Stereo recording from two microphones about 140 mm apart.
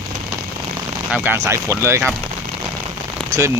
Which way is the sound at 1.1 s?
15° right (ahead or behind).